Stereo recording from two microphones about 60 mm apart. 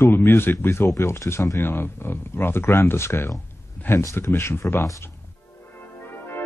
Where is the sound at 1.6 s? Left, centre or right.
Left.